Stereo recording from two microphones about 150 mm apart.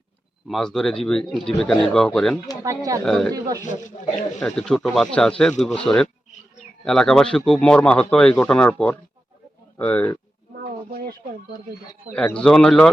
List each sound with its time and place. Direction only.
0.4 s speech: centre (ahead or behind)
2.6 s speech: 20° right (ahead or behind)
3.0 s speech: 5° left (ahead or behind)
3.3 s speech: 25° right (ahead or behind)
3.6 s speech: 55° left (ahead or behind)
4.4 s speech: 5° left (ahead or behind)
10.5 s a sound: 85° right
12.1 s speech: 5° left (ahead or behind)